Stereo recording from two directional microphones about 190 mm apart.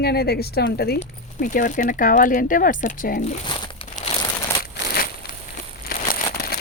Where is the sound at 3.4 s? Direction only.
25° left (ahead or behind).